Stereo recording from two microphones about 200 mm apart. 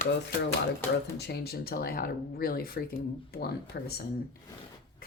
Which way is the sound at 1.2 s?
55° left (ahead or behind).